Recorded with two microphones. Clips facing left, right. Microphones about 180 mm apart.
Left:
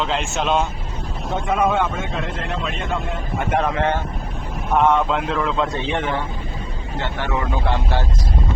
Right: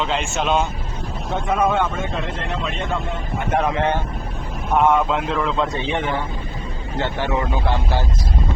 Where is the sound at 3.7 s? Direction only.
20° right (ahead or behind).